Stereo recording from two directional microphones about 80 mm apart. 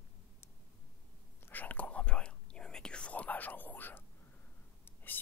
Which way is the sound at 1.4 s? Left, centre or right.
Left.